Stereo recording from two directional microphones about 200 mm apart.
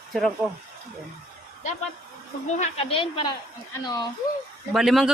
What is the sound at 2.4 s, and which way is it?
Speech, 35° left (ahead or behind).